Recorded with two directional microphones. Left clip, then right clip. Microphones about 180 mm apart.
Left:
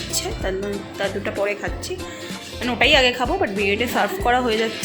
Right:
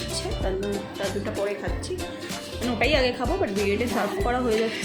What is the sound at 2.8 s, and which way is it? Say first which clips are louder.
Speech: left 7 dB; 10° left (ahead or behind).